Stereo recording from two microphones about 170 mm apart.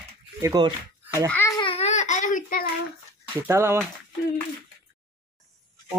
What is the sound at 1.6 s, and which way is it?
Baby cry, 35° left (ahead or behind).